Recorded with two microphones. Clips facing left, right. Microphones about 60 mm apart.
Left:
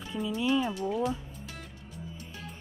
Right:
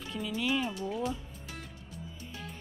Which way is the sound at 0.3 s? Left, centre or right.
Left.